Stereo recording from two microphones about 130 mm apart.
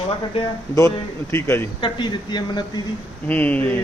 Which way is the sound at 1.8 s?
35° left (ahead or behind).